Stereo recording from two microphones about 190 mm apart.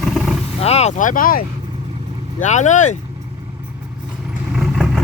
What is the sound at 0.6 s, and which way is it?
Speech, 35° left (ahead or behind).